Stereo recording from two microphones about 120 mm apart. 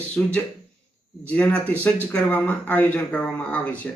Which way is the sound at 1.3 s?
10° left (ahead or behind).